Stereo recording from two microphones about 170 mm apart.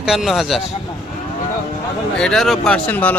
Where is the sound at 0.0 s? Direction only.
Centre (ahead or behind).